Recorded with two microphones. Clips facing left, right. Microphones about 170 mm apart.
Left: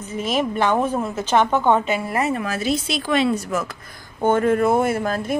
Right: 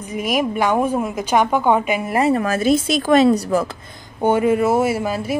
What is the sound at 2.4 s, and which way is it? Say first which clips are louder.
A woman's voice: right 6 dB; 50° right (ahead or behind).